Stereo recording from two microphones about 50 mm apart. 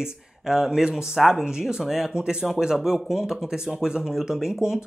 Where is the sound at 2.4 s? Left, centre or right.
Centre.